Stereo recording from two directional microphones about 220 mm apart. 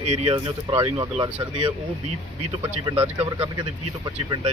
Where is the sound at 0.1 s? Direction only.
25° right (ahead or behind).